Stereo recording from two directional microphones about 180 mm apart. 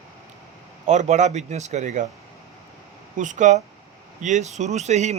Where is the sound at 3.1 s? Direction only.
45° right (ahead or behind).